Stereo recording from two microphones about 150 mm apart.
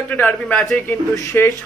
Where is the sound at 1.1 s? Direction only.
20° left (ahead or behind).